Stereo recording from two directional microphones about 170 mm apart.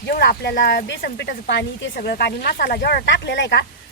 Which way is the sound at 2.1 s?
65° left (ahead or behind).